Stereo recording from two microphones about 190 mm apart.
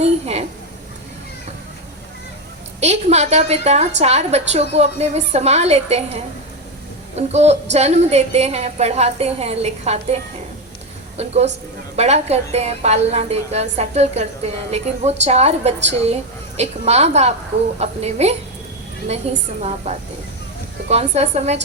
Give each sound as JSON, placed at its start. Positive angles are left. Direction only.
{"t": 0.0, "sound": "a woman's voice", "side_deg": -35}
{"t": 2.8, "sound": "a woman's voice", "side_deg": -35}
{"t": 11.2, "sound": "a woman's voice", "side_deg": -35}